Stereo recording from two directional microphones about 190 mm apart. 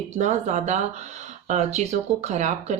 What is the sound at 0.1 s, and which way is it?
Speech, 40° right (ahead or behind).